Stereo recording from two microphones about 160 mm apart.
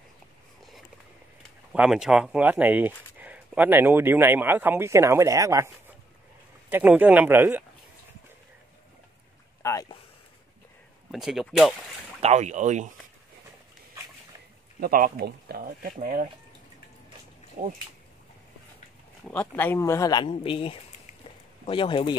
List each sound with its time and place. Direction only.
1.7 s speech: 5° right (ahead or behind)
9.6 s a sound: 20° left (ahead or behind)
11.1 s speech: centre (ahead or behind)
12.2 s speech: 45° right (ahead or behind)
14.8 s speech: 65° right (ahead or behind)
17.6 s speech: 60° right (ahead or behind)
19.2 s speech: 10° left (ahead or behind); by 22.1 s 30° left (ahead or behind)